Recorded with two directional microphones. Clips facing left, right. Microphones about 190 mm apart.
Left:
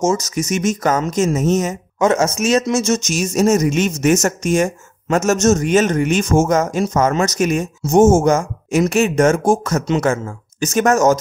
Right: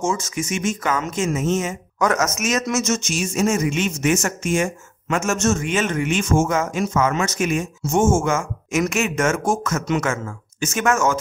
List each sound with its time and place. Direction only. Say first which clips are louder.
0.0 s speech: left 6 dB; 40° left (ahead or behind)
2.0 s speech: left 5 dB; 25° left (ahead or behind)